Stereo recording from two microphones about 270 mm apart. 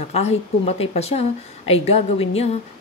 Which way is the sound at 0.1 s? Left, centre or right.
Left.